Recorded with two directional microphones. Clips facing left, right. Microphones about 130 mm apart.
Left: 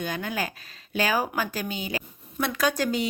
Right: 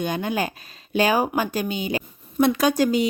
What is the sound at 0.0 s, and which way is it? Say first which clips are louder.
A woman's voice: right 5 dB; 25° right (ahead or behind).